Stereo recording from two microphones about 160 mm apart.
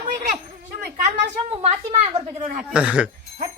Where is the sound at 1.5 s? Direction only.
45° right (ahead or behind).